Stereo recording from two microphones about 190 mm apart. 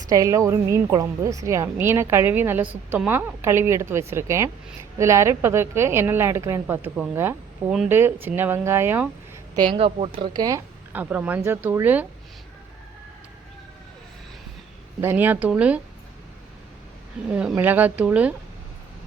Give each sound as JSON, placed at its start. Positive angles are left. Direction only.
{"t": 0.1, "sound": "a woman's voice", "side_deg": -15}
{"t": 9.6, "sound": "speech", "side_deg": -30}
{"t": 10.2, "sound": "a woman's voice", "side_deg": -20}
{"t": 15.0, "sound": "a woman's voice", "side_deg": -10}
{"t": 17.3, "sound": "a woman's voice", "side_deg": -5}